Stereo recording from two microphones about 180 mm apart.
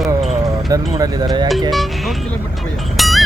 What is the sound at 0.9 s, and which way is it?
Speech, 20° right (ahead or behind).